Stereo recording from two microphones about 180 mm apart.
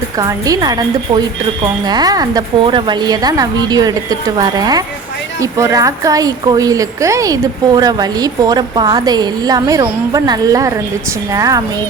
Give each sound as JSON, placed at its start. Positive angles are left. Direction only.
{"t": 0.2, "sound": "a woman's voice", "side_deg": -20}